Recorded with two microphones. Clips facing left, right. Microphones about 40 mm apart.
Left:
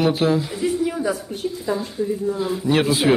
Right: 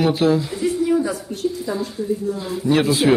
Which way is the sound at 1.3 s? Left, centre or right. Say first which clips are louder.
Right 1 dB; centre.